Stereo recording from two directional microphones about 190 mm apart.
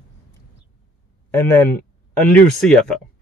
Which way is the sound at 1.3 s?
10° left (ahead or behind).